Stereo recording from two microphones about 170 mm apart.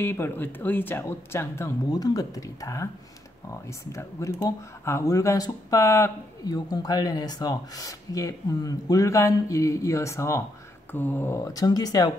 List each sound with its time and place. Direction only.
0.0 s speech: 10° left (ahead or behind)